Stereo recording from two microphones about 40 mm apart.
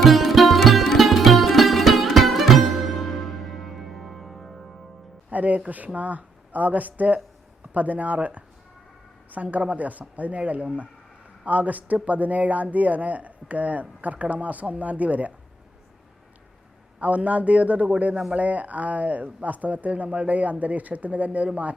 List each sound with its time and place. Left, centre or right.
0.0 s music: centre
5.3 s speech: right
17.0 s speech: right